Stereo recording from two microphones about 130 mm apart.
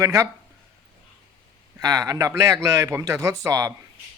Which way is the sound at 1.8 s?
30° right (ahead or behind).